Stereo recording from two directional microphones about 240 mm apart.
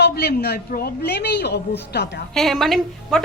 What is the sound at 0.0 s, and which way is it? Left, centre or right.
A woman's voice, left.